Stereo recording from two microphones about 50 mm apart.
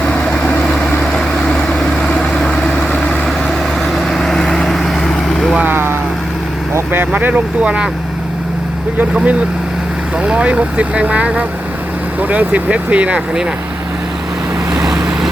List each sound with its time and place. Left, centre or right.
0.6 s vehicle: centre
4.1 s vehicle: centre
5.7 s vehicle: right
7.0 s speech: right
7.6 s speech: right
9.0 s speech: right
14.7 s vehicle: centre